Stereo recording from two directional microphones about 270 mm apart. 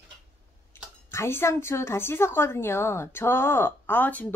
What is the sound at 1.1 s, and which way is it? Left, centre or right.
A woman's voice, centre.